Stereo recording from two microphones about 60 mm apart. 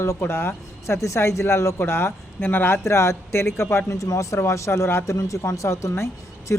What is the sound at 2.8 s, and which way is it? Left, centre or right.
Speech, left.